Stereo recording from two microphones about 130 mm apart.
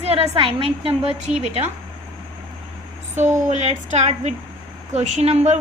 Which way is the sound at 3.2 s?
65° right (ahead or behind).